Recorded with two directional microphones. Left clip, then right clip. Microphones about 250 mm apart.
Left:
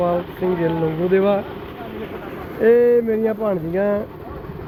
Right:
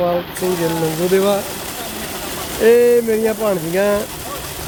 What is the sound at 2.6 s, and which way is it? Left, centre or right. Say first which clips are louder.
Speech: right 2 dB; centre.